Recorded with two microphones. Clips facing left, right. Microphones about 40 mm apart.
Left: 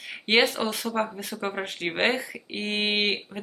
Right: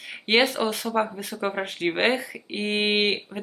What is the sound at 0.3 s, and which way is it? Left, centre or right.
Speech, centre.